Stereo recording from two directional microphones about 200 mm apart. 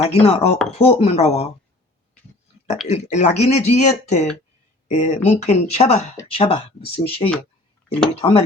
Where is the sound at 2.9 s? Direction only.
35° left (ahead or behind).